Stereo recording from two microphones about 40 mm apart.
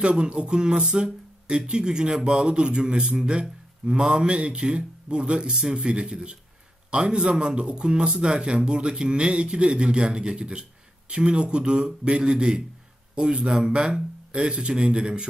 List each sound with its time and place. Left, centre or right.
0.0 s speech: right